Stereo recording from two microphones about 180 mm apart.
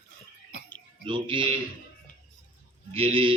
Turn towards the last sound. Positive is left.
turn(degrees=-30)  # may be behind; listen again after turning